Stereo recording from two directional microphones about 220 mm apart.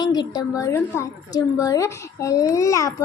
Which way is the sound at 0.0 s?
20° left (ahead or behind).